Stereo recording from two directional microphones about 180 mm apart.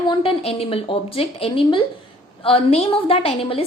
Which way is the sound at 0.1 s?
30° left (ahead or behind).